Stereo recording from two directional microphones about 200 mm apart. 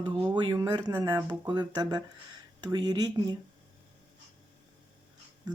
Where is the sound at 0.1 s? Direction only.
25° right (ahead or behind).